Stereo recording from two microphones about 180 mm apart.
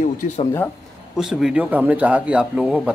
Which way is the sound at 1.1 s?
5° right (ahead or behind).